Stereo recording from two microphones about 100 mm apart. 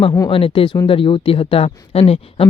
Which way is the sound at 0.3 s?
65° left (ahead or behind).